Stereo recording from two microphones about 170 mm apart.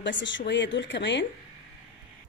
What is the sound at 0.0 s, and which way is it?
Speech, 90° left.